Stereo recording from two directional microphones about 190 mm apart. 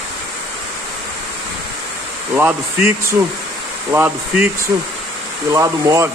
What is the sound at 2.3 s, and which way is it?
Speech, 10° right (ahead or behind).